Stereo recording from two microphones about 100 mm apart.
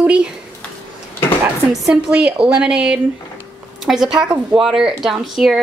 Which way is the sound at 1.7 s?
10° right (ahead or behind).